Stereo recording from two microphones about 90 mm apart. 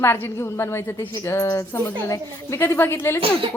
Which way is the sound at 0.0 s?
30° left (ahead or behind).